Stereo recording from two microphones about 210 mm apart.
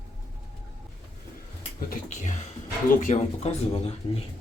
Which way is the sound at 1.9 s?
35° left (ahead or behind).